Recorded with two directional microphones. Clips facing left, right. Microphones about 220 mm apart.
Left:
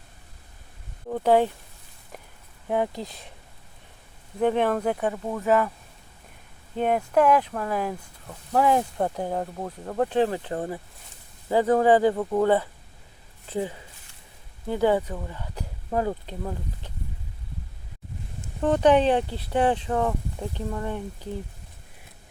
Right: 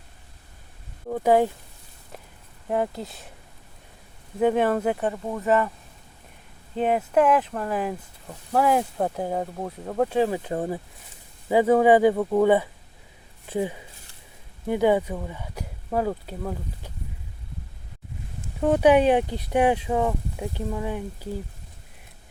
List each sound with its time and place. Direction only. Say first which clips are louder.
1.0 s speech: right 1 dB; 5° right (ahead or behind)
2.6 s speech: even; centre (ahead or behind)
4.4 s speech: right 2 dB; 5° right (ahead or behind)
6.7 s speech: right 1 dB; 5° right (ahead or behind)
18.6 s speech: right 1 dB; 10° right (ahead or behind)